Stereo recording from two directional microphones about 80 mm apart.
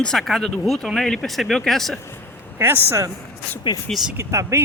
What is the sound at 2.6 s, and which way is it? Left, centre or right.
Speech, right.